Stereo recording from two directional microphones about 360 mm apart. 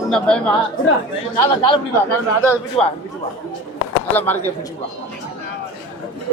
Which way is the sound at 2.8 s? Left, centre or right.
Centre.